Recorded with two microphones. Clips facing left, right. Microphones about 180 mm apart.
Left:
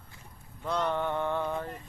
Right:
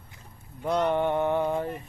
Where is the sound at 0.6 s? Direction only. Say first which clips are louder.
Right 5 dB; 15° right (ahead or behind).